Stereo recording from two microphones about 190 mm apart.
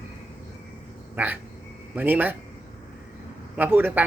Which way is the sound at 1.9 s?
10° right (ahead or behind).